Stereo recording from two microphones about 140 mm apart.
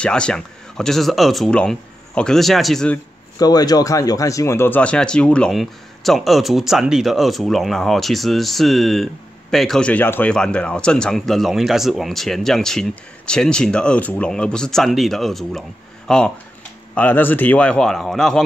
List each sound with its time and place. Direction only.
0.0 s speech: 5° left (ahead or behind)
3.3 s a man's voice: 30° left (ahead or behind); by 18.4 s 5° left (ahead or behind)